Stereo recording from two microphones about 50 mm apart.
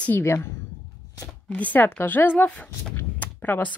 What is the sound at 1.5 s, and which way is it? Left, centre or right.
A woman's voice, left.